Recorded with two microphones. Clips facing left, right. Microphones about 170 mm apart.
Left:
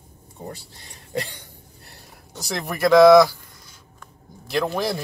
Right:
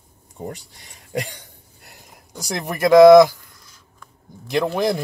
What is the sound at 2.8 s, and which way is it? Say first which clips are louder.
Speech: right 3 dB; 20° right (ahead or behind).